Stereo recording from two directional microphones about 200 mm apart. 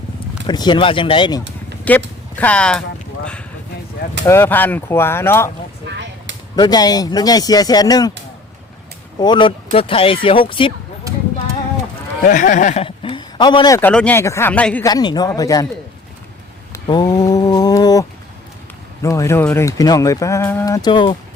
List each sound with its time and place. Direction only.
0.4 s speech: 20° left (ahead or behind)
1.9 s speech: 5° left (ahead or behind)
4.3 s speech: 10° left (ahead or behind)
5.9 s a sound: 65° right (ahead or behind)
6.6 s speech: 20° left (ahead or behind)
9.1 s speech: 20° left (ahead or behind)
11.1 s a sound: 15° right (ahead or behind)
12.2 s a man's voice: 40° left (ahead or behind); by 14.8 s 5° left (ahead or behind)
14.8 s speech: 20° left (ahead or behind)
16.7 s mantra: 20° left (ahead or behind)
19.0 s speech: 15° left (ahead or behind)